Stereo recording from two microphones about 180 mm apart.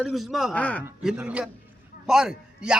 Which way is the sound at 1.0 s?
5° right (ahead or behind).